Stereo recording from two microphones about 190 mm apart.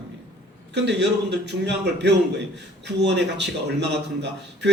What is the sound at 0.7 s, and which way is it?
A man's voice, 65° right (ahead or behind).